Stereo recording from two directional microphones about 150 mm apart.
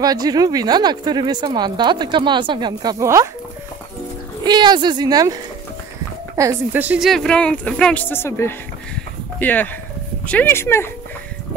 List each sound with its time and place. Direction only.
0.0 s speech: 25° right (ahead or behind)
4.5 s speech: 30° right (ahead or behind); by 7.1 s 10° right (ahead or behind)
7.1 s speech: 5° left (ahead or behind)